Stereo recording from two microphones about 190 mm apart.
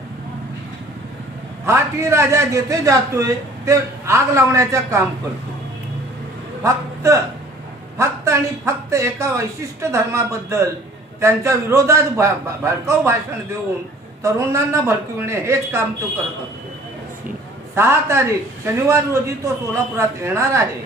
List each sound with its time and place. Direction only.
1.6 s a man's voice: 15° right (ahead or behind)
6.6 s a man's voice: 15° right (ahead or behind)
14.2 s a man's voice: 15° right (ahead or behind)
17.7 s a man's voice: 15° right (ahead or behind)